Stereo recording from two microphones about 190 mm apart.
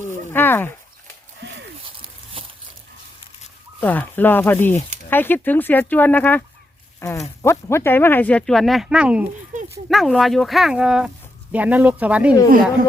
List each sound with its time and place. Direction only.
0.3 s speech: 10° left (ahead or behind)
2.4 s a sound: 30° right (ahead or behind)
3.8 s speech: 10° left (ahead or behind); by 12.4 s 5° right (ahead or behind)